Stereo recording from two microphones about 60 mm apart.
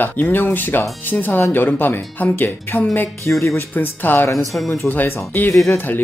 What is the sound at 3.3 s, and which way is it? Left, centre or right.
Speech, left.